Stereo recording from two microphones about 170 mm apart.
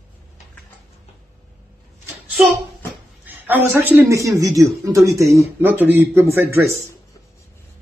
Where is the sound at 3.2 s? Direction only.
10° right (ahead or behind).